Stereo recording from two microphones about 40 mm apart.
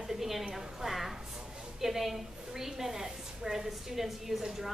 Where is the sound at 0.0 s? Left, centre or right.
Centre.